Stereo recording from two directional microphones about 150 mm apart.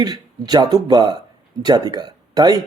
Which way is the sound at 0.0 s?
25° right (ahead or behind).